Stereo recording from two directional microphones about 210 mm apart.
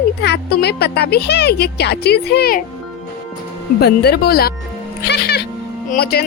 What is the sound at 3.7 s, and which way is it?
Speech, 50° left (ahead or behind).